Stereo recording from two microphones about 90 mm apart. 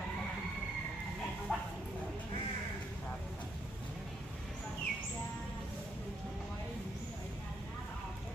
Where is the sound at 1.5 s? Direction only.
10° left (ahead or behind).